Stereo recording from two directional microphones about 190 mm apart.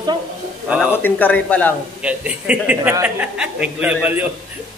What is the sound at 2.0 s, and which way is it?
A man's voice, 5° right (ahead or behind).